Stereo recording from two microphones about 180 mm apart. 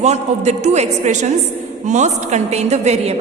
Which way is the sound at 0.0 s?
40° right (ahead or behind).